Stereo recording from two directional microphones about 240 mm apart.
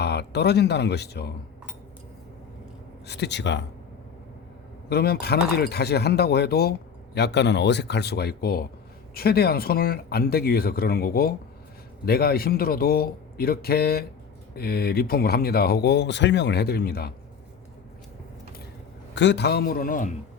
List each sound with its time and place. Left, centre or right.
0.0 s speech: left
3.1 s speech: left
4.9 s speech: left
19.1 s speech: left